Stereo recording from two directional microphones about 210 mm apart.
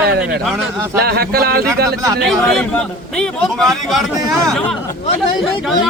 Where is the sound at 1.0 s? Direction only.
45° right (ahead or behind).